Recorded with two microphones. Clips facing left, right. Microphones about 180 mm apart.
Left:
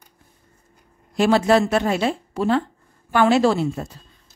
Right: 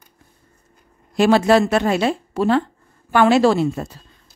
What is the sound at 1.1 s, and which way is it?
A woman's voice, 90° right.